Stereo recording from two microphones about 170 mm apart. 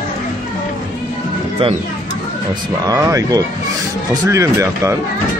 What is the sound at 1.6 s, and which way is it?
Speech, 35° right (ahead or behind).